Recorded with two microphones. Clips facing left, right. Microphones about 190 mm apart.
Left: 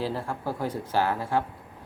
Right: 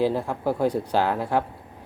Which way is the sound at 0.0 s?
15° right (ahead or behind).